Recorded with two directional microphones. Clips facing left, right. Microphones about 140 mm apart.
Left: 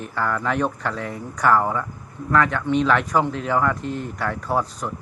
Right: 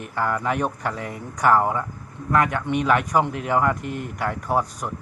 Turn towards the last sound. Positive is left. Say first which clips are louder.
# even
turn(degrees=-10)  # may be behind; listen again after turning